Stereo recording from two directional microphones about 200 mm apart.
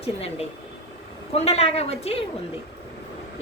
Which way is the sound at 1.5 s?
30° left (ahead or behind).